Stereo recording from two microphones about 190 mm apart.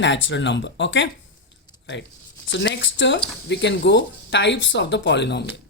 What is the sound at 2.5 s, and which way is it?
Speech, 70° left (ahead or behind).